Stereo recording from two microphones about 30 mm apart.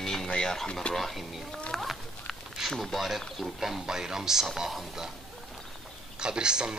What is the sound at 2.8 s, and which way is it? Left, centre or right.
Speech, centre.